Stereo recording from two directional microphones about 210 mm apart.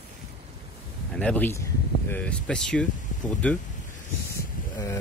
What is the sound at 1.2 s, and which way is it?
Speech, 5° left (ahead or behind).